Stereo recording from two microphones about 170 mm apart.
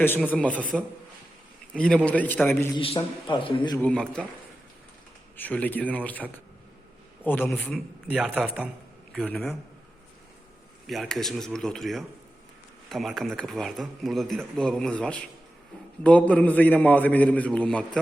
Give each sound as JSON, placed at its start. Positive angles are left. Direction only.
{"t": 0.0, "sound": "a man's voice", "side_deg": 10}
{"t": 2.7, "sound": "a man's voice", "side_deg": 30}
{"t": 3.8, "sound": "a man's voice", "side_deg": 5}
{"t": 5.4, "sound": "a man's voice", "side_deg": 10}
{"t": 8.0, "sound": "a man's voice", "side_deg": -5}
{"t": 9.1, "sound": "speech", "side_deg": 5}
{"t": 10.8, "sound": "a man's voice", "side_deg": 0}